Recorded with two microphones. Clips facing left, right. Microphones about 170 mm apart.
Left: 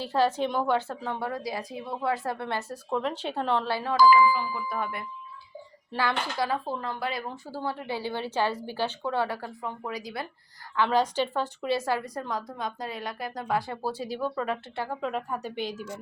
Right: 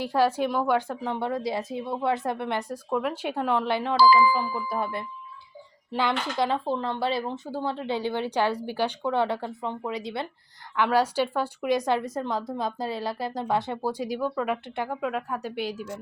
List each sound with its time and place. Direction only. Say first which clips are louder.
0.0 s a woman's voice: right 2 dB; 10° right (ahead or behind)
3.9 s a sound: even; 35° right (ahead or behind)
5.9 s speech: right 2 dB; 20° right (ahead or behind)
10.8 s a woman's voice: right 2 dB; 10° right (ahead or behind)